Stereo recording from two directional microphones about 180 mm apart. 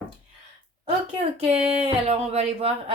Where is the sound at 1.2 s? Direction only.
35° right (ahead or behind).